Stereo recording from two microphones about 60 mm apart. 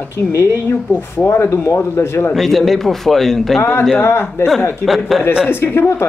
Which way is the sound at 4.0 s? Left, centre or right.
Left.